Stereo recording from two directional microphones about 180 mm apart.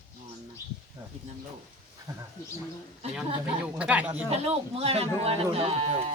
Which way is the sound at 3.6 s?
5° right (ahead or behind).